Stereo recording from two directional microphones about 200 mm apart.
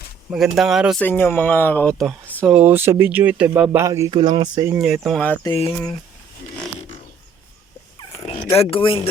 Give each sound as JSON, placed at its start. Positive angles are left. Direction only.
{"t": 0.3, "sound": "speech", "side_deg": 0}
{"t": 1.0, "sound": "speech", "side_deg": 10}
{"t": 2.4, "sound": "speech", "side_deg": -5}
{"t": 4.7, "sound": "speech", "side_deg": -5}
{"t": 5.4, "sound": "speech", "side_deg": 25}
{"t": 8.2, "sound": "dog", "side_deg": 30}
{"t": 8.5, "sound": "speech", "side_deg": 25}